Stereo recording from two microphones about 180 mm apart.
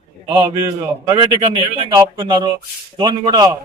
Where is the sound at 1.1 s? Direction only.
30° right (ahead or behind).